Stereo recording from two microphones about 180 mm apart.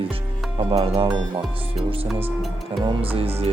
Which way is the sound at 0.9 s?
25° right (ahead or behind).